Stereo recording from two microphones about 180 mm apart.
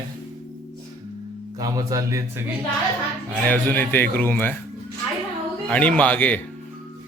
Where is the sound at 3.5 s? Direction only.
10° left (ahead or behind).